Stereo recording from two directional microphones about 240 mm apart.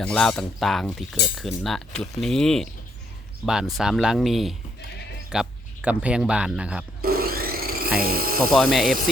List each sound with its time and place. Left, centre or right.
0.0 s cutlery: centre
5.3 s speech: centre
7.0 s wood: right
7.9 s speech: right
8.5 s cutlery: centre